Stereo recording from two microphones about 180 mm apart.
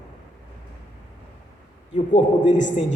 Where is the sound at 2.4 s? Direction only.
45° left (ahead or behind).